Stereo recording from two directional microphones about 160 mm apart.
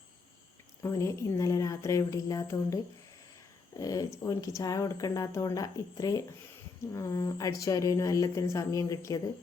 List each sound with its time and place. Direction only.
0.8 s speech: 20° left (ahead or behind)
3.8 s speech: 20° left (ahead or behind)